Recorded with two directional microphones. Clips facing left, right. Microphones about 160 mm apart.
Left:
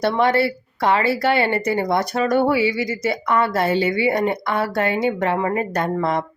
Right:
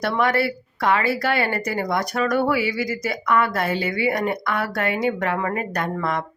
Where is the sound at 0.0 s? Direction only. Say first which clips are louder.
Left 3 dB; 25° left (ahead or behind).